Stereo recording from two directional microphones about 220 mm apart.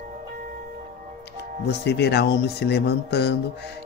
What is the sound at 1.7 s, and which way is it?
Speech, 50° left (ahead or behind).